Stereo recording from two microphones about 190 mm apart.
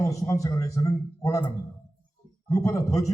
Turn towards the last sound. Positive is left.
turn(degrees=15)  # may be behind; listen again after turning